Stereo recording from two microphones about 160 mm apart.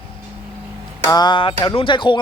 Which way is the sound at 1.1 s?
25° left (ahead or behind).